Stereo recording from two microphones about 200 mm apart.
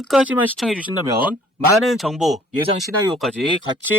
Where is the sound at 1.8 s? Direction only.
Centre (ahead or behind).